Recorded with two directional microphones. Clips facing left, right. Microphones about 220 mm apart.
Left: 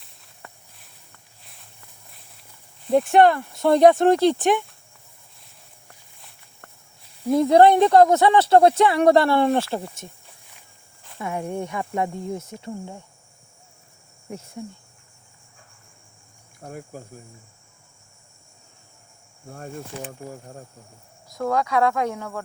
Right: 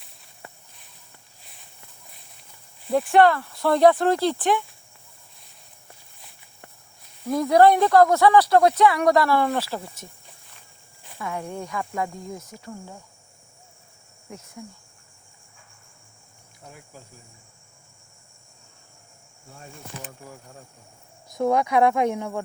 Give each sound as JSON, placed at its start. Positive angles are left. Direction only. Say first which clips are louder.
{"t": 2.9, "sound": "speech", "louder": "left 2 dB", "side_deg": 20}
{"t": 7.3, "sound": "speech", "louder": "left 2 dB", "side_deg": 25}
{"t": 11.2, "sound": "speech", "louder": "left 4 dB", "side_deg": 25}
{"t": 14.3, "sound": "speech", "louder": "left 5 dB", "side_deg": 30}
{"t": 16.6, "sound": "cricket", "louder": "left 9 dB", "side_deg": 50}
{"t": 19.5, "sound": "cricket", "louder": "left 8 dB", "side_deg": 50}
{"t": 20.1, "sound": "speech", "louder": "left 6 dB", "side_deg": 40}
{"t": 21.2, "sound": "speech", "louder": "right 2 dB", "side_deg": -20}